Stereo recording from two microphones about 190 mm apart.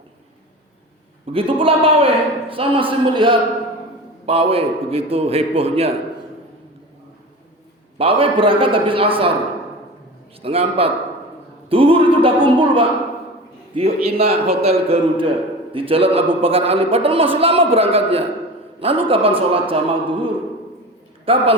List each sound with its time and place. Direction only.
1.3 s a man's voice: 30° right (ahead or behind)
7.9 s a man's voice: 30° right (ahead or behind)
10.4 s a man's voice: 30° right (ahead or behind)